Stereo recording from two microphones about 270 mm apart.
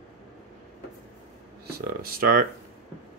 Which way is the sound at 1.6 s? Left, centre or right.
Right.